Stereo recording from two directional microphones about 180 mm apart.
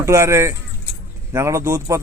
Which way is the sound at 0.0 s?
15° right (ahead or behind).